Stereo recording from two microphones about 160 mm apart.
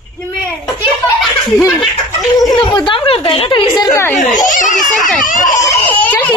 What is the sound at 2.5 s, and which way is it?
Speech, 30° left (ahead or behind).